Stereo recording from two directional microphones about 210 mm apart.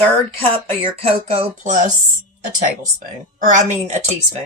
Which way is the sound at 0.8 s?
30° right (ahead or behind).